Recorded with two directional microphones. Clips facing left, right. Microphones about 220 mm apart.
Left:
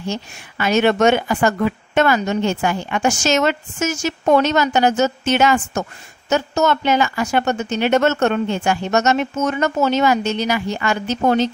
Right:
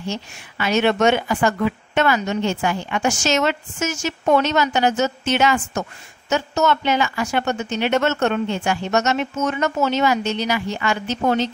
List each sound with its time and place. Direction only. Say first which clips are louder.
0.1 s speech: left 2 dB; 45° left (ahead or behind)